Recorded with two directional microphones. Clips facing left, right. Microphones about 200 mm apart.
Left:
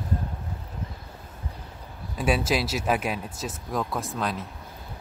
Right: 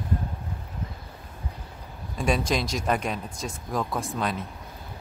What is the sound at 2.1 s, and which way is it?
Speech, 5° left (ahead or behind).